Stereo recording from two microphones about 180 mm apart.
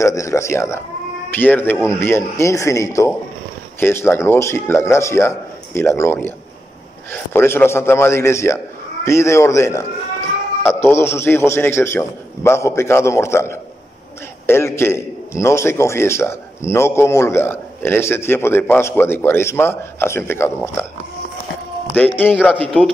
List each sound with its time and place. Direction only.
0.0 s a man's voice: 15° left (ahead or behind)
21.9 s a man's voice: 10° left (ahead or behind)